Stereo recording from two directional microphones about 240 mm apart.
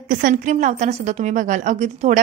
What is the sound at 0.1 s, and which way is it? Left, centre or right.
A woman's voice, right.